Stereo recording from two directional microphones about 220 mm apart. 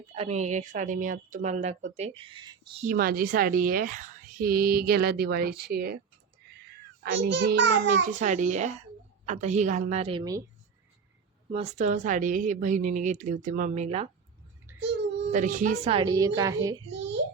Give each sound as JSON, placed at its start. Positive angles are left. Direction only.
{"t": 0.1, "sound": "speech", "side_deg": -30}
{"t": 2.8, "sound": "speech", "side_deg": -40}
{"t": 7.0, "sound": "a child's voice", "side_deg": -55}
{"t": 8.2, "sound": "speech", "side_deg": -35}
{"t": 11.5, "sound": "speech", "side_deg": -30}
{"t": 14.8, "sound": "child singing", "side_deg": -50}
{"t": 15.3, "sound": "a woman's voice", "side_deg": -35}